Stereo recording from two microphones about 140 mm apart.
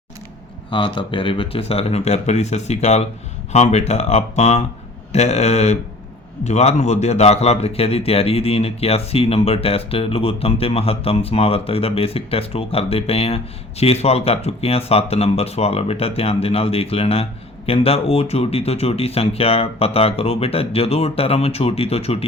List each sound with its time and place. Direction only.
0.7 s a man's voice: 35° left (ahead or behind)